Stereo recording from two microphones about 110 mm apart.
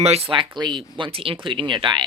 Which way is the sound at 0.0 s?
70° right (ahead or behind).